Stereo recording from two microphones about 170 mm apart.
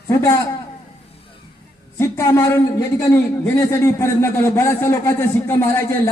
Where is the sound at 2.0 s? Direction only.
15° left (ahead or behind).